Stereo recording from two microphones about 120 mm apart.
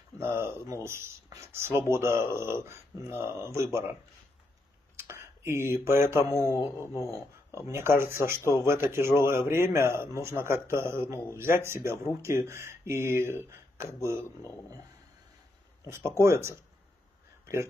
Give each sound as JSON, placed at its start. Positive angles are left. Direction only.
{"t": 0.2, "sound": "speech", "side_deg": -20}
{"t": 4.9, "sound": "speech", "side_deg": -20}
{"t": 6.5, "sound": "speech", "side_deg": 25}
{"t": 7.5, "sound": "speech", "side_deg": -20}
{"t": 16.2, "sound": "speech", "side_deg": -25}